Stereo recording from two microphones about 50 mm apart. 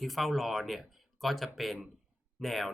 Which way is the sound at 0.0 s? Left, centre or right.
Centre.